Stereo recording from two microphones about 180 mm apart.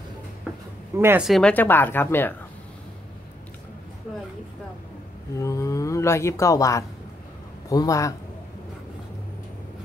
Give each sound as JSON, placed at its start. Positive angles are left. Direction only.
{"t": 0.9, "sound": "speech", "side_deg": -15}
{"t": 1.2, "sound": "speech", "side_deg": 5}
{"t": 5.3, "sound": "a man's voice", "side_deg": 15}